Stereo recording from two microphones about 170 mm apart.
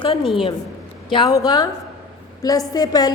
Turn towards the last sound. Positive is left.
turn(degrees=20)  # may be behind; listen again after turning